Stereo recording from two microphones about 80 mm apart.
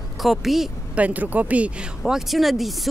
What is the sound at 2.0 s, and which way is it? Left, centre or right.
Speech, centre.